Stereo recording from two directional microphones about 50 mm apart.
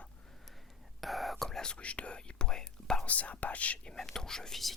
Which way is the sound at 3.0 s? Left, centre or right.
Left.